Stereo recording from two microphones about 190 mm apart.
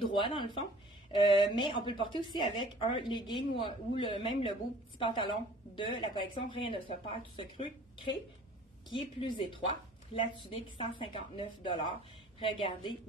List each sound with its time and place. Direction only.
0.0 s a woman's voice: 25° left (ahead or behind)